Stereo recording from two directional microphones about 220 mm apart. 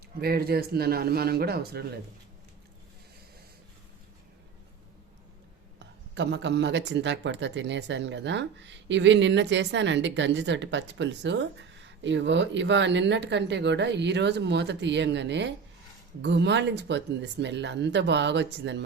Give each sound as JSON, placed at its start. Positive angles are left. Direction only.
{"t": 0.2, "sound": "speech", "side_deg": -45}
{"t": 5.8, "sound": "speech", "side_deg": -50}